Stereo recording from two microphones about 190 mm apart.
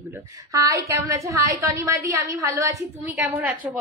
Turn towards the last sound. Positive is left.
turn(degrees=-10)  # may be behind; listen again after turning